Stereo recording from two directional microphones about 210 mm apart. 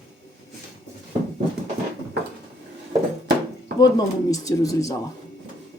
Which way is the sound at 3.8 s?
15° left (ahead or behind).